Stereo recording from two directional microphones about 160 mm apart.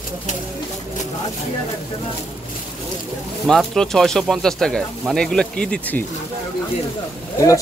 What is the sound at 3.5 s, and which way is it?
Speech, 5° left (ahead or behind).